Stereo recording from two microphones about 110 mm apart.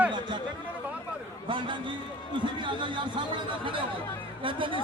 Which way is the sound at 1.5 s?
50° right (ahead or behind).